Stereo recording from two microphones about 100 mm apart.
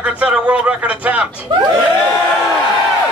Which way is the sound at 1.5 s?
55° right (ahead or behind).